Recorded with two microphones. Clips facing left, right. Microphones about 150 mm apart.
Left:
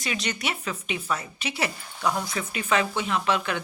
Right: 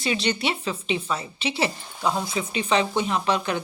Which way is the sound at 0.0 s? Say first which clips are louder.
Right 5 dB; 30° right (ahead or behind).